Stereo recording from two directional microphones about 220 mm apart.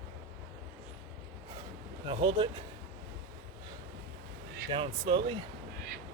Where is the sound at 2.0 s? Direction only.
20° right (ahead or behind).